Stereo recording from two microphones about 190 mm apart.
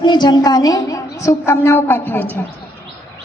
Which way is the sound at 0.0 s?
25° left (ahead or behind).